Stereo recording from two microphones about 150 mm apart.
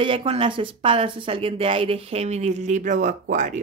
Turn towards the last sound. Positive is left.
turn(degrees=-55)  # may be behind; listen again after turning